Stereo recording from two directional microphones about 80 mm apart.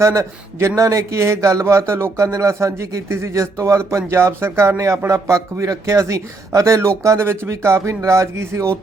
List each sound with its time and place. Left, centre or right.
0.0 s a man's voice: right